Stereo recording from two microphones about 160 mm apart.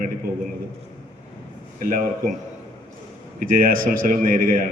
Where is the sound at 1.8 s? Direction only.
60° right (ahead or behind).